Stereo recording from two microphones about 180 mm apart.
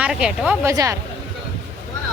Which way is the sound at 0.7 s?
15° right (ahead or behind).